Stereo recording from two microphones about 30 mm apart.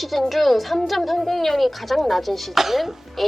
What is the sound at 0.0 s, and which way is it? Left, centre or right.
Speech, centre.